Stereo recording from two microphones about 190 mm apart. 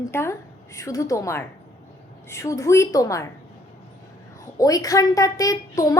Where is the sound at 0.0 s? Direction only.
15° left (ahead or behind).